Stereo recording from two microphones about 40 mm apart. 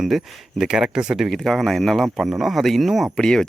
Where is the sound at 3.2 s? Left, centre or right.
Centre.